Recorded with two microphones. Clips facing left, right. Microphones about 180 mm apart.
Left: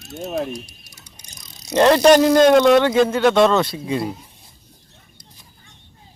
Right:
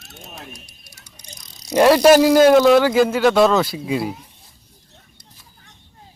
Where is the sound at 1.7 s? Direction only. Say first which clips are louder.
Right 1 dB; 10° right (ahead or behind).